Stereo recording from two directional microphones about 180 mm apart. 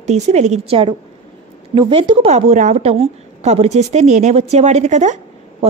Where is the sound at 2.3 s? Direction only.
40° right (ahead or behind).